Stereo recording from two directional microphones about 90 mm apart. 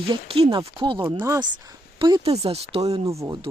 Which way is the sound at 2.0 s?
75° right (ahead or behind).